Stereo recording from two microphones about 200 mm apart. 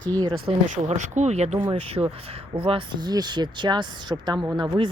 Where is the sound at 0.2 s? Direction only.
25° right (ahead or behind).